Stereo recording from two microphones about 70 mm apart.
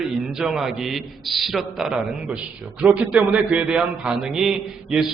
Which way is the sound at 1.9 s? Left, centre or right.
Centre.